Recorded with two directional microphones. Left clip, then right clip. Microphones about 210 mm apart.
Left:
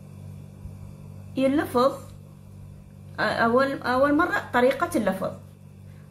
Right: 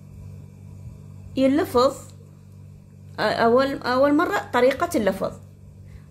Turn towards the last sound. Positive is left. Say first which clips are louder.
# right 3 dB
turn(degrees=-35)  # may be behind; listen again after turning